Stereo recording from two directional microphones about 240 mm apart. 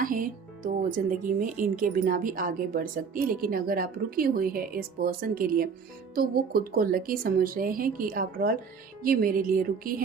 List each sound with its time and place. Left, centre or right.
0.0 s speech: right